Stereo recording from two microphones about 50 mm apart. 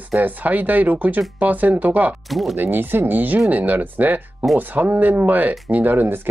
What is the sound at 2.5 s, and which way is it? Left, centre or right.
Speech, right.